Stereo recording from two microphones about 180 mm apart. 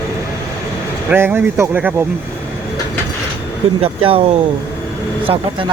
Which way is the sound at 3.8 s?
30° right (ahead or behind).